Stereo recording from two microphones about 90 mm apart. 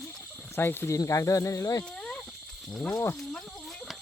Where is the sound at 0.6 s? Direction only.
25° left (ahead or behind).